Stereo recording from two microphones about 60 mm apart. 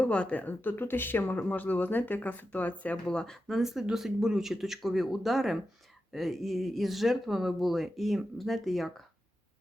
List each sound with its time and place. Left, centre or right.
0.0 s speech: centre
3.4 s speech: centre